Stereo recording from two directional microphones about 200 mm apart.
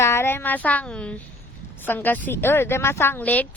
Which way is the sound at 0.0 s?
10° left (ahead or behind).